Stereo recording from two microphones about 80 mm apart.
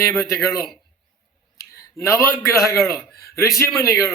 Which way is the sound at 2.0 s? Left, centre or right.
Left.